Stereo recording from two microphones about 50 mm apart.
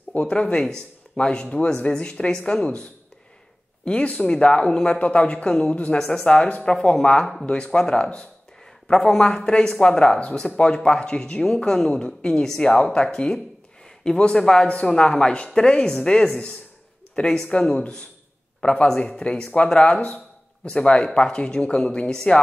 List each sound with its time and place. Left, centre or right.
0.1 s speech: left
7.4 s a man's voice: centre